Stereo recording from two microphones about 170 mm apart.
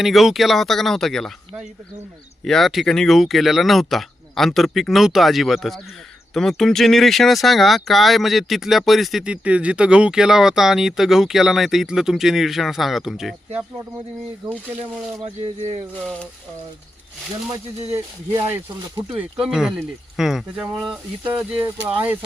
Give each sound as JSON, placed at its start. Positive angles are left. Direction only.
{"t": 0.0, "sound": "speech", "side_deg": 0}
{"t": 17.9, "sound": "speech", "side_deg": -20}
{"t": 19.1, "sound": "speech", "side_deg": -5}